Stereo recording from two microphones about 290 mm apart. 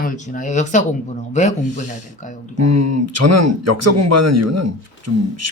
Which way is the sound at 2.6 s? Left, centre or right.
Right.